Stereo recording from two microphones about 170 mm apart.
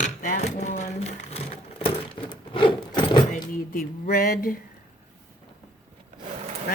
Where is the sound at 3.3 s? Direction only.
60° left (ahead or behind).